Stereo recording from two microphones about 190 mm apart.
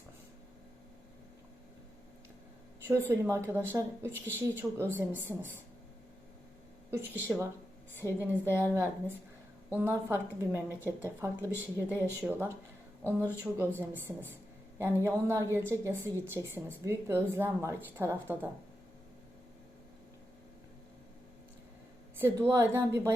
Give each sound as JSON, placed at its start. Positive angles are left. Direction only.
{"t": 2.8, "sound": "a woman's voice", "side_deg": -15}
{"t": 6.9, "sound": "a woman's voice", "side_deg": -10}
{"t": 8.0, "sound": "a woman's voice", "side_deg": 15}
{"t": 8.5, "sound": "a woman's voice", "side_deg": -15}
{"t": 22.2, "sound": "a woman's voice", "side_deg": -10}